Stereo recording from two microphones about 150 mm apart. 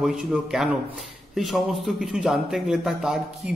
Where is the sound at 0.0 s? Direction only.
5° right (ahead or behind).